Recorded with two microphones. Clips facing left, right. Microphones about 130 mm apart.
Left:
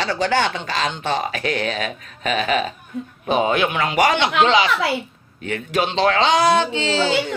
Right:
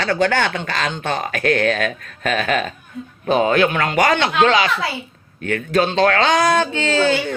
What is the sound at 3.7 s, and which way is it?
Speech, 45° right (ahead or behind).